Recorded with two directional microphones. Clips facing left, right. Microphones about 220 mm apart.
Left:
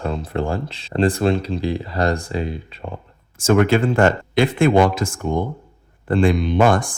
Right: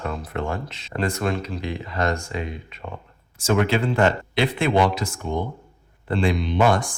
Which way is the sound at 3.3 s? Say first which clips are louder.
Left 5 dB; 50° left (ahead or behind).